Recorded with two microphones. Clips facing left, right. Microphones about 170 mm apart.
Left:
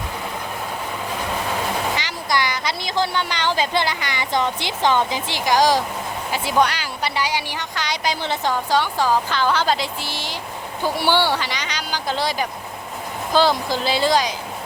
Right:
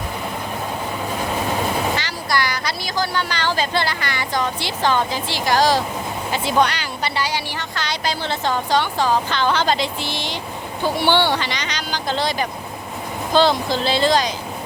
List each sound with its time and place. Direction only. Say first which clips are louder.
2.0 s speech: even; 20° left (ahead or behind)